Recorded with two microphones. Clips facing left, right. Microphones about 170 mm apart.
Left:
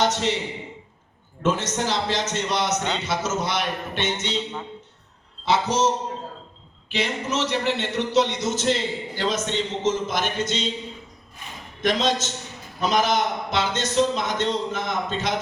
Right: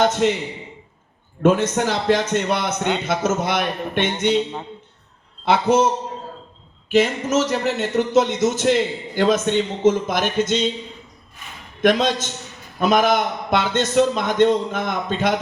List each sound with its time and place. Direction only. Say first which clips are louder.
0.0 s a man's voice: right 5 dB; 50° right (ahead or behind)
1.4 s speech: right 7 dB; 55° right (ahead or behind)
5.5 s a man's voice: right 5 dB; 55° right (ahead or behind)
6.9 s speech: right 8 dB; 45° right (ahead or behind)
11.8 s speech: right 5 dB; 50° right (ahead or behind)